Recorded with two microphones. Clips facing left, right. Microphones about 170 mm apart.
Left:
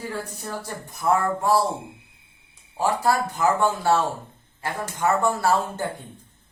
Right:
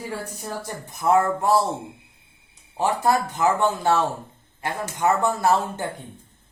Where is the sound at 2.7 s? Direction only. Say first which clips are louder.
Right 1 dB; 20° right (ahead or behind).